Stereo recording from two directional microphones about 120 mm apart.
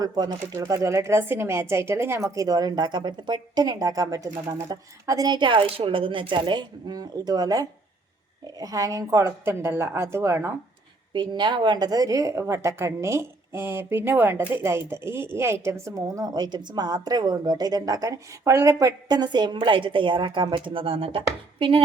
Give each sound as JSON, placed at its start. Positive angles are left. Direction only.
{"t": 0.0, "sound": "a woman's voice", "side_deg": -35}
{"t": 11.1, "sound": "a woman's voice", "side_deg": -40}